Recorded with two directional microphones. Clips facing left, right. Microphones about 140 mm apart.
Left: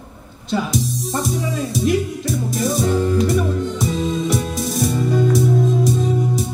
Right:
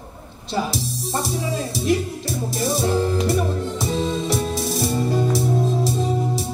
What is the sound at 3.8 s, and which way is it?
Music, 30° right (ahead or behind).